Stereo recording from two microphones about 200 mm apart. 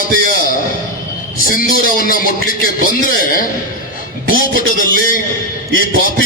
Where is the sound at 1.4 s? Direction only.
45° left (ahead or behind).